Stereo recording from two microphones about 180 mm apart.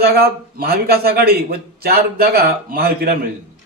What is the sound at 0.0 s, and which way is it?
A man's voice, 55° right (ahead or behind).